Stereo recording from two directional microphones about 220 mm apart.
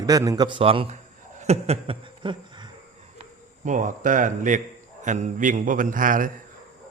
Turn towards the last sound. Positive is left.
turn(degrees=-40)  # may be behind; listen again after turning